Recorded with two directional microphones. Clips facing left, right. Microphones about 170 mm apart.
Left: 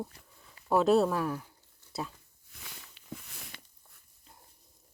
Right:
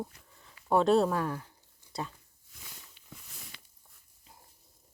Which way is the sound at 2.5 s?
75° left (ahead or behind).